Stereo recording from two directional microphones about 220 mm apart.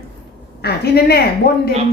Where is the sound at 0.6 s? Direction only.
45° left (ahead or behind).